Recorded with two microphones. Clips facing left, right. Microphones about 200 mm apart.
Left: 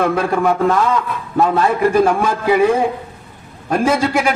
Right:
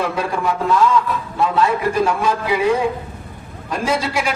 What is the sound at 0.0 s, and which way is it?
A man's voice, 55° left (ahead or behind).